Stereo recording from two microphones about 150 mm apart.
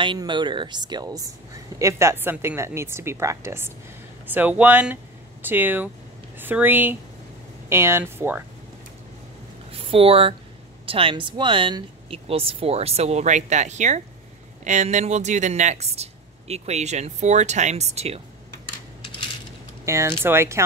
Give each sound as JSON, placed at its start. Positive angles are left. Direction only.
{"t": 0.0, "sound": "a woman's voice", "side_deg": -30}
{"t": 9.7, "sound": "a sound", "side_deg": -40}
{"t": 10.9, "sound": "speech", "side_deg": -35}
{"t": 19.8, "sound": "a woman's voice", "side_deg": -20}